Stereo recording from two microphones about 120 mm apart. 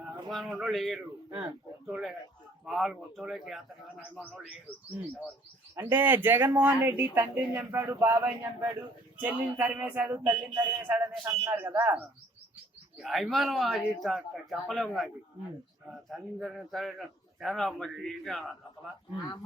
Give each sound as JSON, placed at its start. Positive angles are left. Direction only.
{"t": 0.3, "sound": "a man's voice", "side_deg": 0}
{"t": 5.7, "sound": "speech", "side_deg": -15}
{"t": 10.2, "sound": "speech", "side_deg": -30}
{"t": 10.8, "sound": "speech", "side_deg": -15}
{"t": 13.0, "sound": "a man's voice", "side_deg": 0}